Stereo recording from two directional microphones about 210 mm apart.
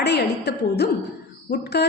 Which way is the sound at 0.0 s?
50° left (ahead or behind).